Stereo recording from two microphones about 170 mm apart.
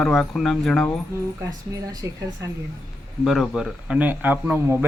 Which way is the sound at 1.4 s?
20° right (ahead or behind).